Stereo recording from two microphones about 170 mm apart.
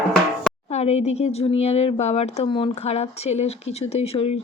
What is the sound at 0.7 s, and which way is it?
Speech, 40° left (ahead or behind).